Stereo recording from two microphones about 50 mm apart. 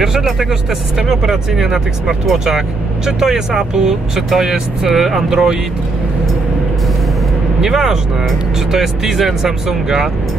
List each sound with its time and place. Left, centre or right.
0.0 s speech: centre
7.6 s speech: centre